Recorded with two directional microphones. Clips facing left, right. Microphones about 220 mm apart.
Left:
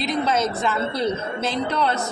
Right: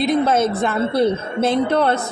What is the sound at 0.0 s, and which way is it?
Speech, 55° right (ahead or behind).